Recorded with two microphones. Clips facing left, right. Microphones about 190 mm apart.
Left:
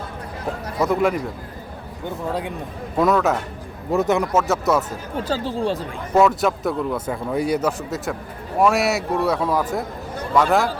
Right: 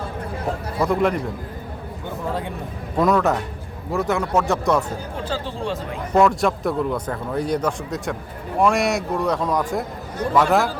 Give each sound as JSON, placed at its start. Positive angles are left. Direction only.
{"t": 0.8, "sound": "speech", "side_deg": 5}
{"t": 3.0, "sound": "speech", "side_deg": 0}
{"t": 3.9, "sound": "a man's voice", "side_deg": 20}
{"t": 4.3, "sound": "speech", "side_deg": 5}
{"t": 5.3, "sound": "speech", "side_deg": 40}
{"t": 6.1, "sound": "speech", "side_deg": 0}